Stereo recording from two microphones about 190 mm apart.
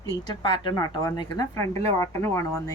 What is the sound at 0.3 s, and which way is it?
A woman's voice, 20° left (ahead or behind).